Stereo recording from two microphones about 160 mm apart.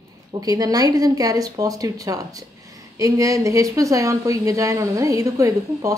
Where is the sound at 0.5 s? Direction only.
20° right (ahead or behind).